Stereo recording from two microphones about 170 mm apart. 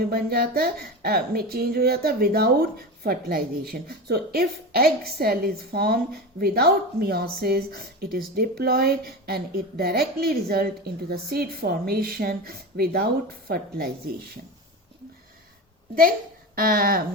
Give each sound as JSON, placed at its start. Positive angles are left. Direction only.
{"t": 0.0, "sound": "a woman's voice", "side_deg": -65}
{"t": 16.6, "sound": "a woman's voice", "side_deg": -60}